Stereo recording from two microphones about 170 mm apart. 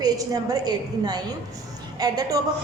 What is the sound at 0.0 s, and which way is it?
A woman's voice, 20° right (ahead or behind).